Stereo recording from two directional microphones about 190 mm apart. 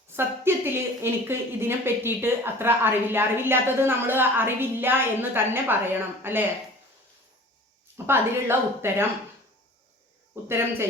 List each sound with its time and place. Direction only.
0.2 s a woman's voice: 10° right (ahead or behind)
7.9 s a woman's voice: 10° right (ahead or behind)
10.3 s a sound: 10° right (ahead or behind)